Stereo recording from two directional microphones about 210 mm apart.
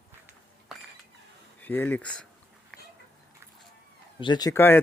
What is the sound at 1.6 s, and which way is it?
Speech, 10° left (ahead or behind).